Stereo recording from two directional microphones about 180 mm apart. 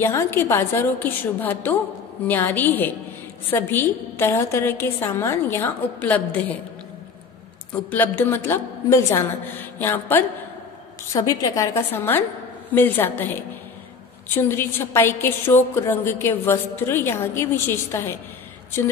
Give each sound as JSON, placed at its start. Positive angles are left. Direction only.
{"t": 0.0, "sound": "a woman's voice", "side_deg": 15}
{"t": 7.7, "sound": "a woman's voice", "side_deg": 10}